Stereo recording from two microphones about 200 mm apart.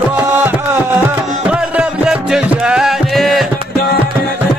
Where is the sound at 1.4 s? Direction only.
5° right (ahead or behind).